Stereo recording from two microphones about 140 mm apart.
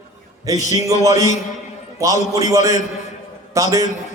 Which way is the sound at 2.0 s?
25° right (ahead or behind).